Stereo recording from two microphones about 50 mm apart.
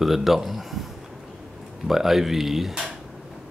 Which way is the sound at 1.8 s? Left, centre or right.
Centre.